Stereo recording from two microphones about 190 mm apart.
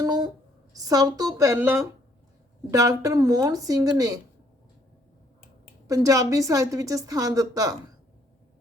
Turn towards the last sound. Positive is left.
turn(degrees=-20)  # may be behind; listen again after turning